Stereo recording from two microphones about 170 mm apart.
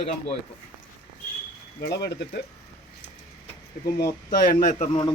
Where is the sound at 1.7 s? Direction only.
70° left (ahead or behind).